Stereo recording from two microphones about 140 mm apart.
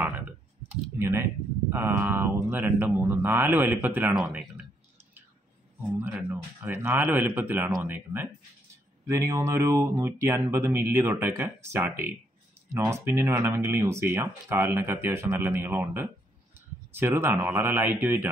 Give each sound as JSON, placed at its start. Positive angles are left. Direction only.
{"t": 0.9, "sound": "speech", "side_deg": -15}
{"t": 5.9, "sound": "speech", "side_deg": -15}